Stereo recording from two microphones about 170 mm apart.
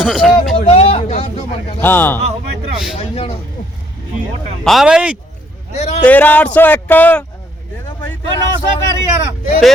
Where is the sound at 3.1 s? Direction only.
35° left (ahead or behind).